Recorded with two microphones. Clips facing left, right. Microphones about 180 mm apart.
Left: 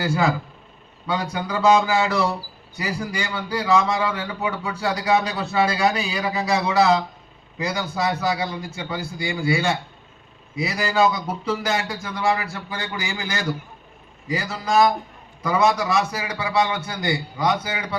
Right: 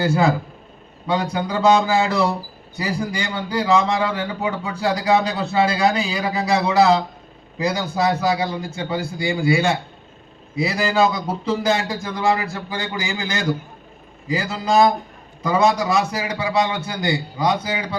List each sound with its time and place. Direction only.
0.0 s a man's voice: 25° right (ahead or behind)